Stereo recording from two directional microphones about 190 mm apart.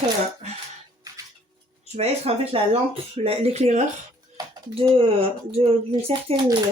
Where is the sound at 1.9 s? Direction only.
30° right (ahead or behind).